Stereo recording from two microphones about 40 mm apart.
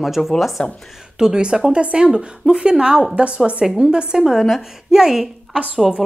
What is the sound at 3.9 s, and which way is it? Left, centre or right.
A woman's voice, right.